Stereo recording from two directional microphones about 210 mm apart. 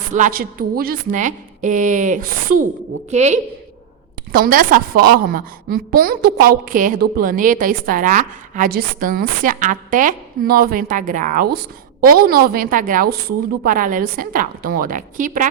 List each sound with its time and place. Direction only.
0.1 s a woman's voice: 40° right (ahead or behind)
4.3 s a woman's voice: 45° right (ahead or behind)